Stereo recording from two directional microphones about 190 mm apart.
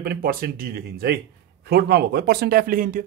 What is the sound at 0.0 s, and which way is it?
A man's voice, 55° right (ahead or behind).